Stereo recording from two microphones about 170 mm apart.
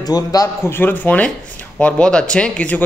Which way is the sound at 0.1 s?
20° left (ahead or behind).